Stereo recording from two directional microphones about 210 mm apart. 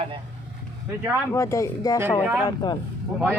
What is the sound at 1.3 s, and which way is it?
Speech, 15° left (ahead or behind).